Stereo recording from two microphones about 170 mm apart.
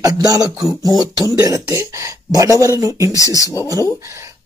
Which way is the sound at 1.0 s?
20° right (ahead or behind).